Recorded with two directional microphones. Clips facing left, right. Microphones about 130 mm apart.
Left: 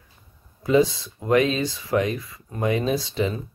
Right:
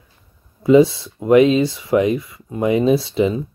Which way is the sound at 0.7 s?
25° right (ahead or behind).